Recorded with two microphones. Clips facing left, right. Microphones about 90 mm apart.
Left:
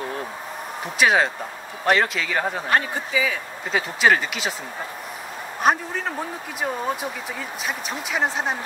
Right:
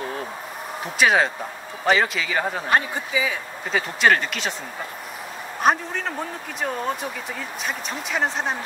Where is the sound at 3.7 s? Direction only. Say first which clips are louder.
Even; centre (ahead or behind).